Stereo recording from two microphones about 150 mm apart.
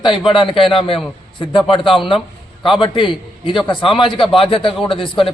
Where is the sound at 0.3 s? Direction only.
35° left (ahead or behind).